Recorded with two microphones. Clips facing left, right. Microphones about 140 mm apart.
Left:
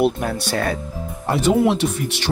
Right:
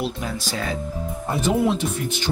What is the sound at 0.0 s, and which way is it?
Speech, 60° left (ahead or behind).